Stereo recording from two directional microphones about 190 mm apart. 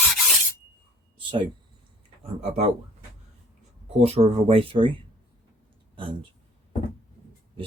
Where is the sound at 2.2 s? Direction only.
35° right (ahead or behind).